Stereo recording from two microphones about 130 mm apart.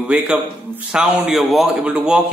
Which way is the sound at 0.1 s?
10° right (ahead or behind).